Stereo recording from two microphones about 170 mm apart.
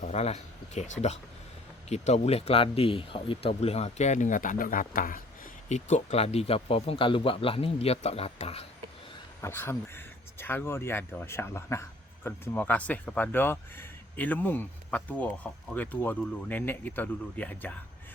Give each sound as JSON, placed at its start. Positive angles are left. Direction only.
{"t": 0.0, "sound": "speech", "side_deg": 40}
{"t": 5.6, "sound": "speech", "side_deg": 45}
{"t": 9.4, "sound": "speech", "side_deg": 15}